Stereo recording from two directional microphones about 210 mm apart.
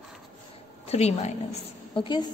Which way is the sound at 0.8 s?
30° left (ahead or behind).